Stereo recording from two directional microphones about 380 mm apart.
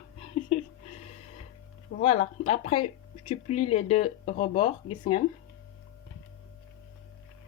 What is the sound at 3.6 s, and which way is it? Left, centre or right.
A woman's voice, centre.